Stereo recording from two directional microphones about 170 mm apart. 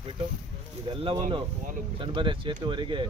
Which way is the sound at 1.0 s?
35° right (ahead or behind).